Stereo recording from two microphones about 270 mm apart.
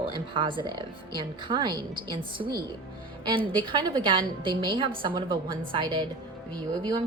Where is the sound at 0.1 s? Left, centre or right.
Centre.